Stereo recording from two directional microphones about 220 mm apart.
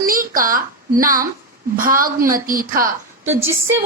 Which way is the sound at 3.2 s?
10° right (ahead or behind).